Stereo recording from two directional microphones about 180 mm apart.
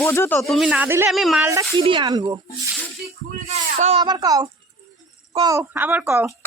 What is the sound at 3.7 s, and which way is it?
Speech, 35° right (ahead or behind).